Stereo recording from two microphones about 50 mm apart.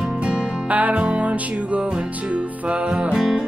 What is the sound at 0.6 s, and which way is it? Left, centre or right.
Music, right.